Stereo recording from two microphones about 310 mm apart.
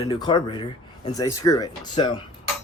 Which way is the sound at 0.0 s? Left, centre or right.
Centre.